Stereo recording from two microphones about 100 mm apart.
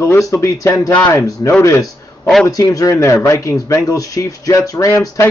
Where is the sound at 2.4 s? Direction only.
35° left (ahead or behind).